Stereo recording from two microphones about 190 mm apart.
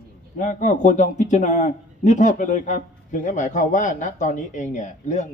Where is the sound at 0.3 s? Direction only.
40° left (ahead or behind).